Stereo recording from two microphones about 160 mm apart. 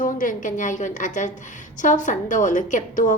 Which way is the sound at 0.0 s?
55° left (ahead or behind).